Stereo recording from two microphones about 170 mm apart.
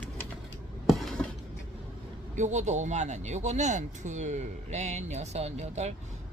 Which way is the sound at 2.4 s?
45° right (ahead or behind).